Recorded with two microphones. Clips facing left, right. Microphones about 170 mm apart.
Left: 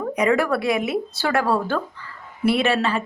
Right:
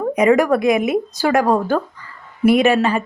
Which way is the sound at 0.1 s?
20° right (ahead or behind).